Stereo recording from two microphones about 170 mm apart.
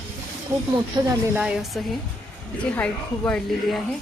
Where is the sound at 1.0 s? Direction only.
25° right (ahead or behind).